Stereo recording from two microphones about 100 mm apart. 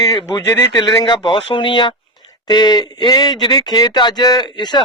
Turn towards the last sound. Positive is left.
turn(degrees=45)  # may be behind; listen again after turning